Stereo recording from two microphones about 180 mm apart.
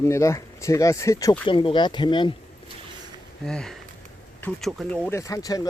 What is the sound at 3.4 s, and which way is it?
Speech, 5° left (ahead or behind).